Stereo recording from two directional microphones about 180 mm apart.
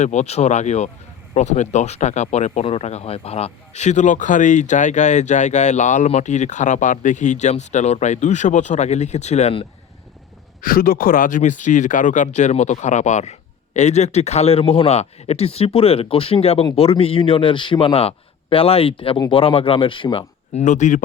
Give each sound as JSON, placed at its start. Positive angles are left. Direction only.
{"t": 0.0, "sound": "speech", "side_deg": 40}
{"t": 10.6, "sound": "speech", "side_deg": 55}